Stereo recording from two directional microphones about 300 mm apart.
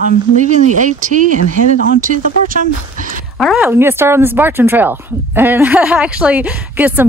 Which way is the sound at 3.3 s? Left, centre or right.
Centre.